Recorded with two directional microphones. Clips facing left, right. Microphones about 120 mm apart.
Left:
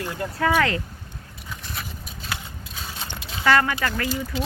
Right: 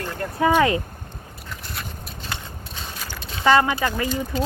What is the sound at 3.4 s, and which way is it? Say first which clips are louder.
Speech: right 3 dB; 20° right (ahead or behind).